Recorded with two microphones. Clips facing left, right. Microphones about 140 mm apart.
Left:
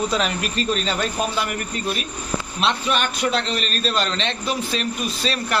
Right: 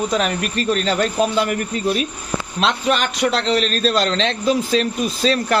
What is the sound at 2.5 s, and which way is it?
A man's voice, 90° right.